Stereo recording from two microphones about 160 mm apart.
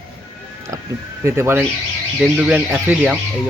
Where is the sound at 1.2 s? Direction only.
15° right (ahead or behind).